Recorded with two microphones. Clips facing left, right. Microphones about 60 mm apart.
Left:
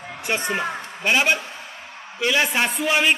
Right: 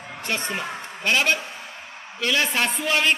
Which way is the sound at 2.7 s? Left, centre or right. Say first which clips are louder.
Left 2 dB; centre.